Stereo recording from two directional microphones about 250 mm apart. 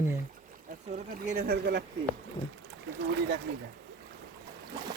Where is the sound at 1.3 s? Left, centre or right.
Right.